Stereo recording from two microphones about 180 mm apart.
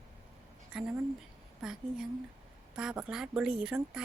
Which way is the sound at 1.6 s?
5° right (ahead or behind).